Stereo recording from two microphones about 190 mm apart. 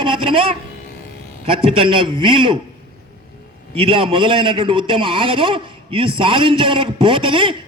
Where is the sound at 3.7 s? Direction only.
30° right (ahead or behind).